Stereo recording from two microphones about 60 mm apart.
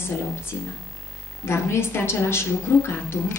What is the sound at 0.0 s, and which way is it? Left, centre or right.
A woman's voice, left.